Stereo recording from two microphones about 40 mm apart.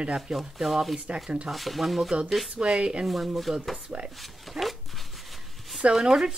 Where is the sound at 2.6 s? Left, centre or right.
Right.